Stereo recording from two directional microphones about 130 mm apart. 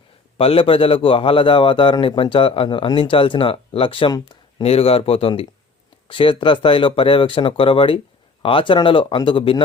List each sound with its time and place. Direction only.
0.3 s a man's voice: 45° left (ahead or behind)
4.6 s a man's voice: 50° left (ahead or behind)